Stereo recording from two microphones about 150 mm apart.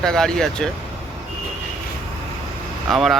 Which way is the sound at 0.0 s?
5° left (ahead or behind).